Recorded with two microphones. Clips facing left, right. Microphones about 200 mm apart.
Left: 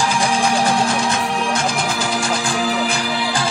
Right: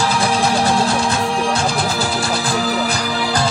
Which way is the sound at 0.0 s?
15° left (ahead or behind).